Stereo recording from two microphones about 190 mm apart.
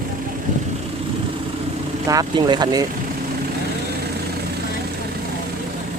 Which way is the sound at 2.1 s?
20° right (ahead or behind).